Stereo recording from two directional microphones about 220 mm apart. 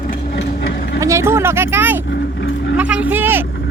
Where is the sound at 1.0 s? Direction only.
15° right (ahead or behind).